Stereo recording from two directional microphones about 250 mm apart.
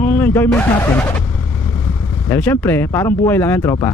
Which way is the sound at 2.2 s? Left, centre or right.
Centre.